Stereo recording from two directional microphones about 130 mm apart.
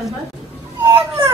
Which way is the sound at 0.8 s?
20° right (ahead or behind).